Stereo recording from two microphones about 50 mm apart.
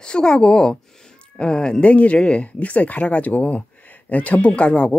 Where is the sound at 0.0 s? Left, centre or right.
Centre.